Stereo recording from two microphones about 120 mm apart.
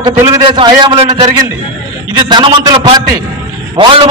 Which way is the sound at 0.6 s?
45° right (ahead or behind).